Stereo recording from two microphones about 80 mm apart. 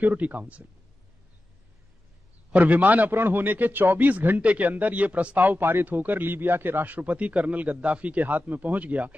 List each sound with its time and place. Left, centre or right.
0.0 s a man's voice: right
2.5 s a man's voice: right